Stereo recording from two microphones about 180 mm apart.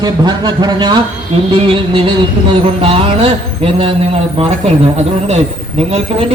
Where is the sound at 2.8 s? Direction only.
30° right (ahead or behind).